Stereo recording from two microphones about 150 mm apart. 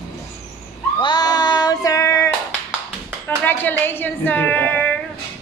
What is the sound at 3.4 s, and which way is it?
A woman's voice, 15° left (ahead or behind).